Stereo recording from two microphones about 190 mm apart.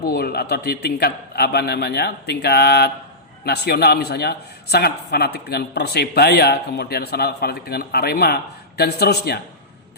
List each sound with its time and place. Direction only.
0.0 s a man's voice: 55° left (ahead or behind)